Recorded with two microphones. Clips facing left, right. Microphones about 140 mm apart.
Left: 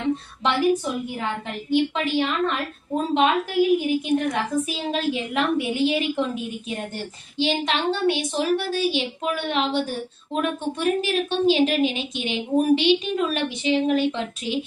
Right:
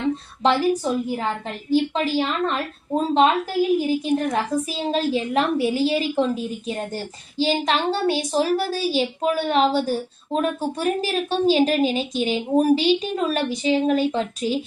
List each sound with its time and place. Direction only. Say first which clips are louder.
0.4 s a woman's voice: right 2 dB; 35° right (ahead or behind)